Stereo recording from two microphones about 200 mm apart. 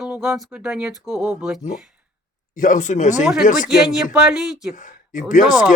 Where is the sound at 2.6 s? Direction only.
40° left (ahead or behind).